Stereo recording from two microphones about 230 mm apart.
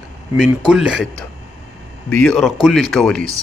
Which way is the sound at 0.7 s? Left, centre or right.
Centre.